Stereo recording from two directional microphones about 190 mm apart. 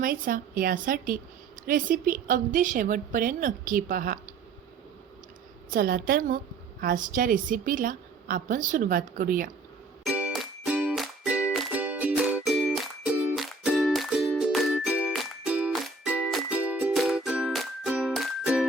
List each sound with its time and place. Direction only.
0.0 s a woman's voice: 50° right (ahead or behind)
5.7 s a woman's voice: 50° right (ahead or behind)
10.0 s music: 5° right (ahead or behind)